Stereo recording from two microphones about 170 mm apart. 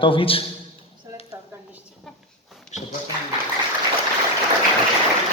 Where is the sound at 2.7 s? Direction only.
45° left (ahead or behind).